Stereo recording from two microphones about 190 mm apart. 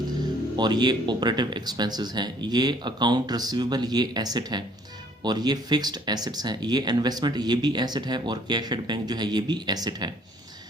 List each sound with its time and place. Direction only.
0.5 s speech: 20° right (ahead or behind)